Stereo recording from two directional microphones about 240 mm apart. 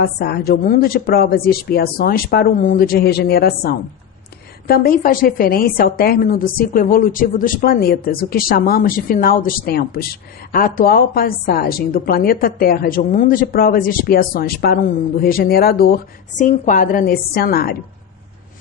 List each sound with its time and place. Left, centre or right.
0.0 s a woman's voice: left